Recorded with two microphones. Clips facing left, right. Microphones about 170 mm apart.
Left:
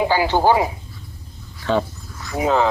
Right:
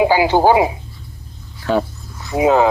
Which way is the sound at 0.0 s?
10° right (ahead or behind).